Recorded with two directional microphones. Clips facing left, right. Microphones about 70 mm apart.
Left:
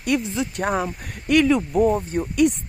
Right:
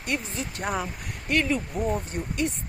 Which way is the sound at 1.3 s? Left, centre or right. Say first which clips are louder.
Left 8 dB; left.